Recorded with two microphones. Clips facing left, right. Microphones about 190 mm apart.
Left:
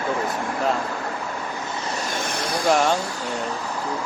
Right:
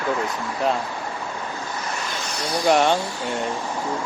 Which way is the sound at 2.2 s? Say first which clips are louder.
Left 2 dB; 55° left (ahead or behind).